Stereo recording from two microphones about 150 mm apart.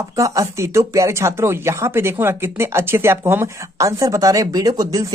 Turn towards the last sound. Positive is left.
turn(degrees=-25)  # may be behind; listen again after turning